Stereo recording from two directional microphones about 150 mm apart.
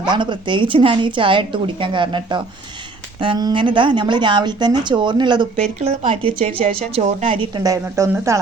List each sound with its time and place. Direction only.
0.0 s a woman's voice: 30° right (ahead or behind)
5.5 s a woman's voice: 50° right (ahead or behind)
7.5 s speech: 25° right (ahead or behind)